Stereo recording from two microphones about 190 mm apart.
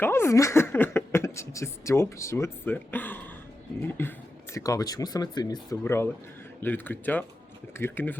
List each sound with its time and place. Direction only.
0.0 s speech: 15° left (ahead or behind)